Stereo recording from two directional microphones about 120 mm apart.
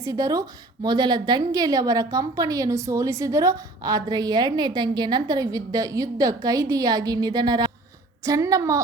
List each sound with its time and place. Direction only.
0.0 s a woman's voice: 30° right (ahead or behind)